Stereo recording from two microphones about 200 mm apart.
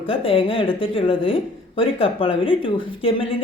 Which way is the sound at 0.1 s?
25° left (ahead or behind).